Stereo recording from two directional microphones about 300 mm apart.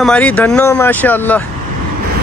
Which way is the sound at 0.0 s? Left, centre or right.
Centre.